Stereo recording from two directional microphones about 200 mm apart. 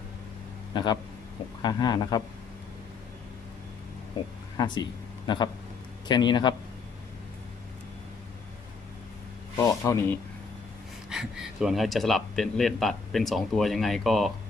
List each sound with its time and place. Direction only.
0.7 s speech: 20° left (ahead or behind)
4.5 s speech: 20° left (ahead or behind)
9.6 s speech: 15° left (ahead or behind)
11.1 s speech: centre (ahead or behind)